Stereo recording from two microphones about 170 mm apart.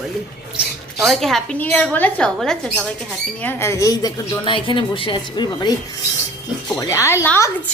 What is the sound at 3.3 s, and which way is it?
A woman's voice, 15° left (ahead or behind).